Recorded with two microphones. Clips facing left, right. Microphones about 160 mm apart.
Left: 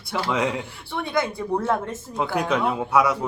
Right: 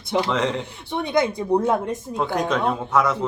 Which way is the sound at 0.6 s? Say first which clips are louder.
Right 3 dB; 20° right (ahead or behind).